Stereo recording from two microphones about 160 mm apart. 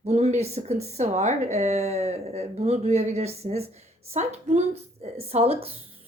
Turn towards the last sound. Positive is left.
turn(degrees=-40)  # may be behind; listen again after turning